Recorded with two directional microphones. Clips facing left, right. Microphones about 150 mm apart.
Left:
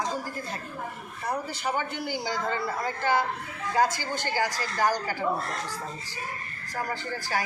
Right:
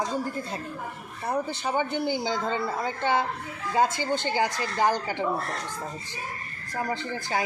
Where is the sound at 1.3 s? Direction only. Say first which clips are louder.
Right 2 dB; 20° right (ahead or behind).